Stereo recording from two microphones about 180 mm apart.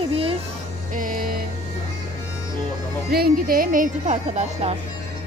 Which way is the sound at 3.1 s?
55° right (ahead or behind).